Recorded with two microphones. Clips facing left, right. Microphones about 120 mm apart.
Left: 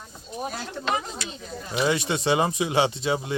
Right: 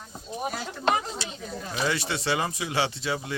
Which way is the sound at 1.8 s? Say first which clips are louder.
Left 5 dB; 20° left (ahead or behind).